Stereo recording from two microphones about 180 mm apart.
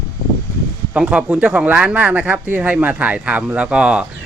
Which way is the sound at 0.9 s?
5° right (ahead or behind).